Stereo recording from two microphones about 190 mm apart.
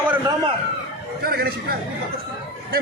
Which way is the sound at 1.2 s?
50° right (ahead or behind).